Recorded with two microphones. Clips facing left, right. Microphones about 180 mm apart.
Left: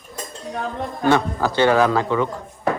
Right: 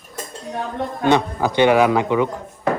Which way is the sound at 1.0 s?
20° right (ahead or behind).